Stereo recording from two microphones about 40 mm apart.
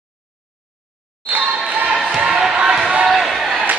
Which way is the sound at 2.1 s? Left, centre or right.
Centre.